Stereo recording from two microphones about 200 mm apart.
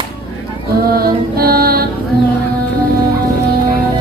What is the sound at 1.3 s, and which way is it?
Music, 50° right (ahead or behind).